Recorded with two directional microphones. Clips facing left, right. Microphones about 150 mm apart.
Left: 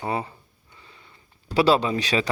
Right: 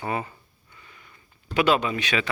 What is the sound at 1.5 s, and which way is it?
Speech, 30° left (ahead or behind).